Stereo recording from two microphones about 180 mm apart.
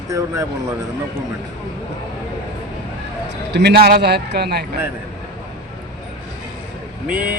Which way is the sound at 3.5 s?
65° right (ahead or behind).